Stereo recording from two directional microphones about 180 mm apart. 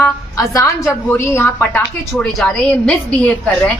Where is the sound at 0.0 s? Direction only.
15° left (ahead or behind).